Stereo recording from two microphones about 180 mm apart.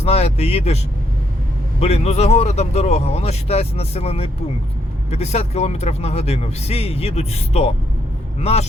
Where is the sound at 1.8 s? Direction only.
35° left (ahead or behind).